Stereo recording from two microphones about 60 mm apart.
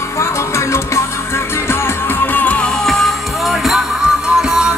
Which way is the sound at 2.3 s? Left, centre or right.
Left.